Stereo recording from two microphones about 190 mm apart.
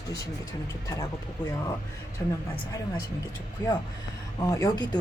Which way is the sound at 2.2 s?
15° left (ahead or behind).